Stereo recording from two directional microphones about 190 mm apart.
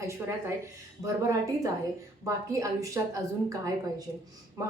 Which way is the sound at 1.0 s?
15° right (ahead or behind).